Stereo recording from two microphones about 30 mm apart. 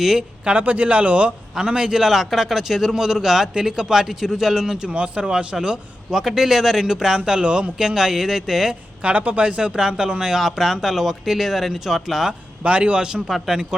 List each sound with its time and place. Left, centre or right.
0.5 s speech: right
1.6 s a man's voice: right
2.0 s speech: centre
6.1 s speech: centre
6.9 s a man's voice: right
7.8 s speech: centre
9.0 s speech: right
9.6 s speech: right
10.4 s speech: centre
12.6 s a man's voice: right